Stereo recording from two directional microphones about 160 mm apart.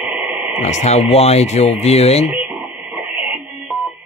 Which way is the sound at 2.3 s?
15° right (ahead or behind).